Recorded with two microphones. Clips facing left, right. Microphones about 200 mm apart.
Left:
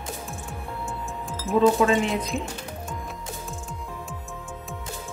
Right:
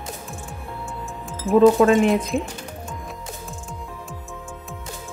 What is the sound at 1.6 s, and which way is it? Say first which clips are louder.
Speech: right 5 dB; 55° right (ahead or behind).